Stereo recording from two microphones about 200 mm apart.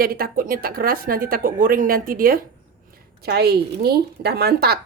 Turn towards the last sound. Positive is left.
turn(degrees=-50)  # may be behind; listen again after turning